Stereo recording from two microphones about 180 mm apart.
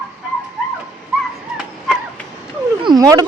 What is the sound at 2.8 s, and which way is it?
Speech, 25° right (ahead or behind).